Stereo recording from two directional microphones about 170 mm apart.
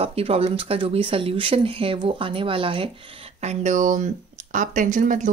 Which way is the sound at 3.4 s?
45° right (ahead or behind).